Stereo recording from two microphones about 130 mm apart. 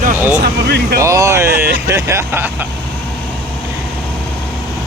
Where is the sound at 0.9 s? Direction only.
25° right (ahead or behind).